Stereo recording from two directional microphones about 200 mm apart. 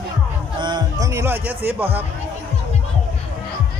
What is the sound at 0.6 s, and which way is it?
Speech, 20° right (ahead or behind).